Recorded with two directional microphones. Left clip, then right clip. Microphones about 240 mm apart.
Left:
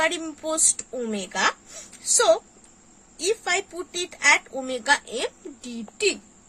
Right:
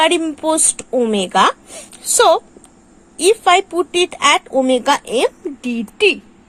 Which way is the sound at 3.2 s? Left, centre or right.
Centre.